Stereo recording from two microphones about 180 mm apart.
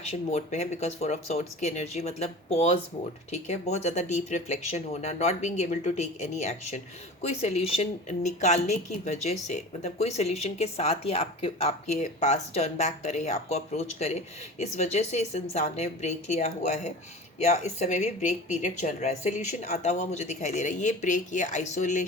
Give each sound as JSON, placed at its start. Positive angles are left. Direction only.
{"t": 0.0, "sound": "speech", "side_deg": 35}